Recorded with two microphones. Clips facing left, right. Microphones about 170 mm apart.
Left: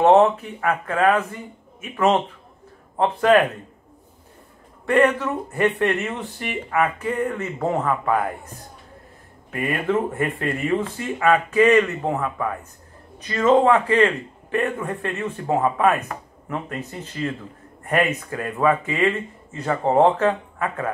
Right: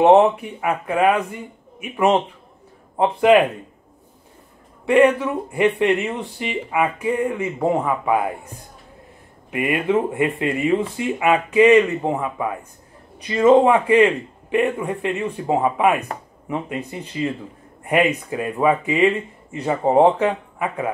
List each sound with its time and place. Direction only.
0.0 s speech: 15° right (ahead or behind)
4.8 s speech: 15° right (ahead or behind)
9.5 s speech: 10° right (ahead or behind)
18.3 s speech: 15° right (ahead or behind)